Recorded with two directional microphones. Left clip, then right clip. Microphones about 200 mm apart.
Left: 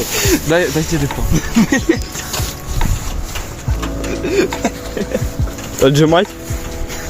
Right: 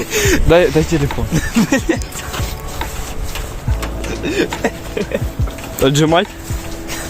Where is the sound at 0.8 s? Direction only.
30° right (ahead or behind).